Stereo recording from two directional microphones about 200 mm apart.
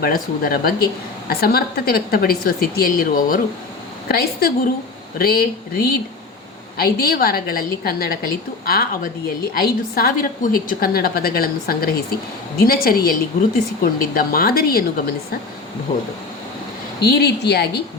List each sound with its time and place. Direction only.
0.0 s a woman's voice: 45° left (ahead or behind)
15.9 s speech: 20° left (ahead or behind)
17.0 s speech: 55° left (ahead or behind)